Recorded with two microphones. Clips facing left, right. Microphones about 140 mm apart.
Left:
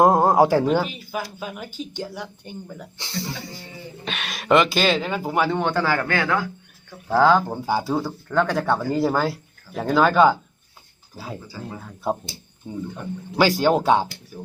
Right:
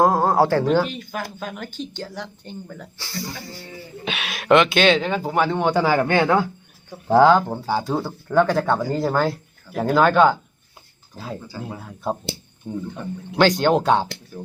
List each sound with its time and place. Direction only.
0.0 s speech: 20° left (ahead or behind)
4.0 s speech: centre (ahead or behind)
5.7 s speech: 15° right (ahead or behind)
7.3 s speech: centre (ahead or behind)
7.6 s speech: 10° left (ahead or behind)
7.9 s speech: 10° right (ahead or behind)
12.6 s speech: centre (ahead or behind)